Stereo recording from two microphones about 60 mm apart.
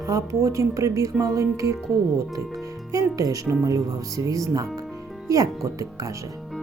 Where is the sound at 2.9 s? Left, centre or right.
Right.